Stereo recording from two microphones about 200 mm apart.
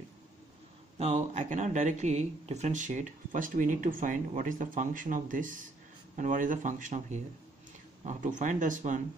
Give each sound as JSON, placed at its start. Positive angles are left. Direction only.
{"t": 0.9, "sound": "speech", "side_deg": -35}